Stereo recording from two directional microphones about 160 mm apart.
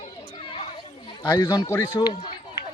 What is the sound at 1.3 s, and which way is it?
Speech, 25° left (ahead or behind).